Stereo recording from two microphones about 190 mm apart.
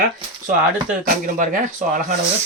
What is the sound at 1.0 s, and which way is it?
Speech, 45° right (ahead or behind).